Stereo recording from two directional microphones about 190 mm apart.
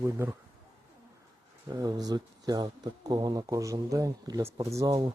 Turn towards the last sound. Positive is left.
turn(degrees=-20)  # may be behind; listen again after turning